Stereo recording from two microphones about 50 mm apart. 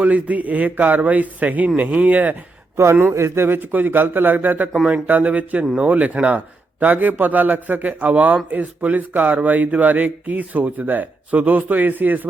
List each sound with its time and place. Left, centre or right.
0.0 s speech: right
2.9 s speech: right
3.2 s speech: right